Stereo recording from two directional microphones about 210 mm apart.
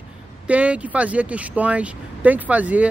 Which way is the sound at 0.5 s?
5° right (ahead or behind).